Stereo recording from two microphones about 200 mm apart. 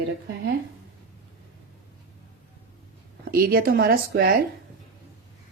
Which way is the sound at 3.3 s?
50° right (ahead or behind).